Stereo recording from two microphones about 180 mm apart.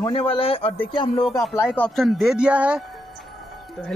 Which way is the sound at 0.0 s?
30° left (ahead or behind).